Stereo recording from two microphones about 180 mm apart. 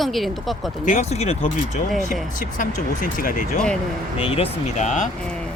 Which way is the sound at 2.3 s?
50° left (ahead or behind).